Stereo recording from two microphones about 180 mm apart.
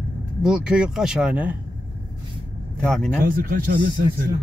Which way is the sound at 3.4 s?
55° right (ahead or behind).